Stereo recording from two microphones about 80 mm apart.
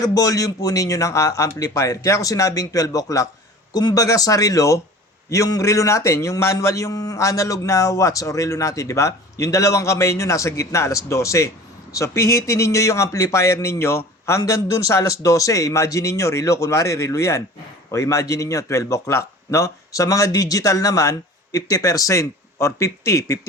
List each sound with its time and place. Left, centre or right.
0.0 s a man's voice: left